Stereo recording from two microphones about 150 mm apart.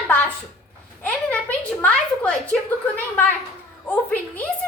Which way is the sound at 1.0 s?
10° left (ahead or behind).